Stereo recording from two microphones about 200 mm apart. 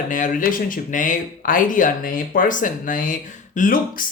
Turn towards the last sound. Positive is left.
turn(degrees=40)  # may be behind; listen again after turning